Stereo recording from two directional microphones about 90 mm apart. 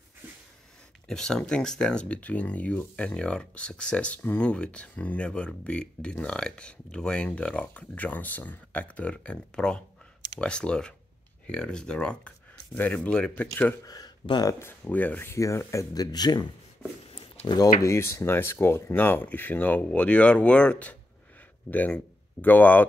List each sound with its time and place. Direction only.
1.0 s speech: 5° left (ahead or behind)
13.8 s a sound: 45° left (ahead or behind)
14.6 s speech: 20° left (ahead or behind)
15.2 s speech: 30° left (ahead or behind); by 16.4 s 50° left (ahead or behind)
17.8 s speech: 30° left (ahead or behind)